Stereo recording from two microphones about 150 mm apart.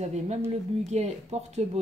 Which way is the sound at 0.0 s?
50° right (ahead or behind).